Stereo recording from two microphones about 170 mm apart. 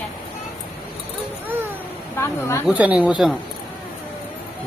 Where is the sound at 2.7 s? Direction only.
5° right (ahead or behind).